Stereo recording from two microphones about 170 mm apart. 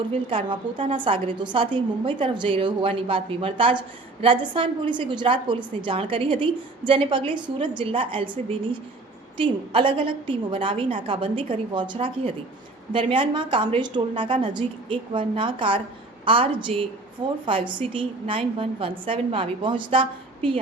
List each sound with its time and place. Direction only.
0.3 s a woman's voice: 30° right (ahead or behind)